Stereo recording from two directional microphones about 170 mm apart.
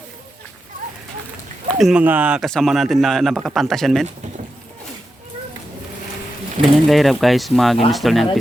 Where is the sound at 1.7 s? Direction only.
Centre (ahead or behind).